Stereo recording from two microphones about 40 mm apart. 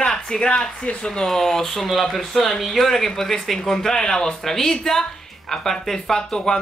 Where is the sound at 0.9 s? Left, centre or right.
Left.